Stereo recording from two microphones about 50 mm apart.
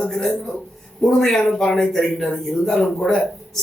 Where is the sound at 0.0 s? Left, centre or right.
Centre.